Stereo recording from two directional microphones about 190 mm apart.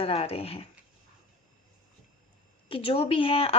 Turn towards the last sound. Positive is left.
turn(degrees=30)  # may be behind; listen again after turning